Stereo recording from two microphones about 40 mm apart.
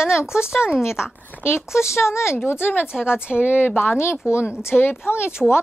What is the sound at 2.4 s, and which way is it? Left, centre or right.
Speech, left.